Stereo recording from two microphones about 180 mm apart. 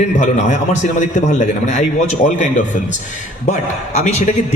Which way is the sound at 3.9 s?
40° left (ahead or behind).